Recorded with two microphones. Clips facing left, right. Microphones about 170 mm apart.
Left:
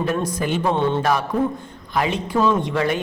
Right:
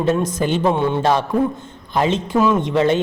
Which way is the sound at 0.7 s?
10° right (ahead or behind).